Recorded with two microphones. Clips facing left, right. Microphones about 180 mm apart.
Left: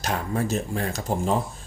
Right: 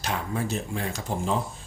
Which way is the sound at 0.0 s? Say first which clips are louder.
Left 3 dB; 45° left (ahead or behind).